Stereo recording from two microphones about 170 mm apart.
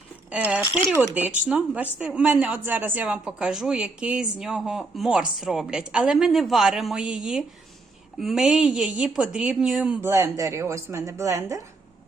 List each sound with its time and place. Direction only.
0.3 s speech: 10° right (ahead or behind)
0.6 s speech: 25° left (ahead or behind)
1.1 s speech: 10° right (ahead or behind)